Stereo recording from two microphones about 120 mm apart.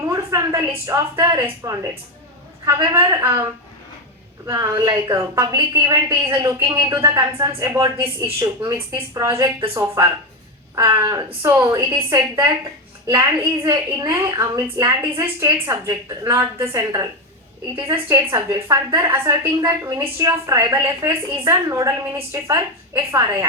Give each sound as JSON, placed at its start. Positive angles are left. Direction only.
{"t": 0.1, "sound": "a woman's voice", "side_deg": -25}
{"t": 4.4, "sound": "a woman's voice", "side_deg": -25}
{"t": 18.3, "sound": "a woman's voice", "side_deg": -30}